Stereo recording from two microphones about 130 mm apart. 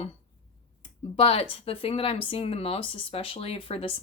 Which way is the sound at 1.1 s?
50° left (ahead or behind).